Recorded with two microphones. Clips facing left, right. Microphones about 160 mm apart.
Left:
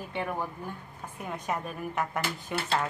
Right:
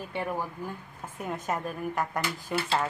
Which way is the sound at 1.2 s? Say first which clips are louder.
Right 2 dB; 5° right (ahead or behind).